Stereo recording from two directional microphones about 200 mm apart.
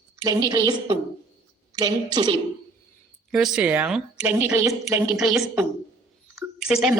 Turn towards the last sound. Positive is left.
turn(degrees=-5)  # may be behind; listen again after turning